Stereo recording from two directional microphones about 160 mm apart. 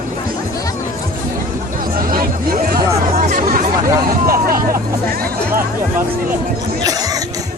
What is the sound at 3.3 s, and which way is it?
Chatter, 60° right (ahead or behind).